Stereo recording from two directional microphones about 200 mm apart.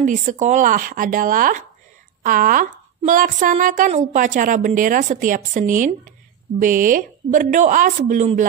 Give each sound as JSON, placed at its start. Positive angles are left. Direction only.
{"t": 0.0, "sound": "speech", "side_deg": -40}